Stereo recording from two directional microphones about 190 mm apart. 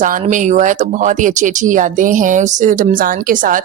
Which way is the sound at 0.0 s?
40° right (ahead or behind).